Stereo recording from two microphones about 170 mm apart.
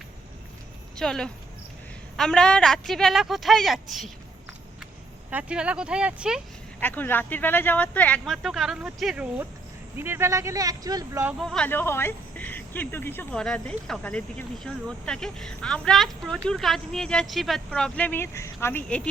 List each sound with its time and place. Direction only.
0.9 s speech: 5° left (ahead or behind)
5.3 s speech: 5° right (ahead or behind)
6.7 s speech: 10° left (ahead or behind)
10.0 s speech: 15° right (ahead or behind)
11.3 s speech: 5° left (ahead or behind)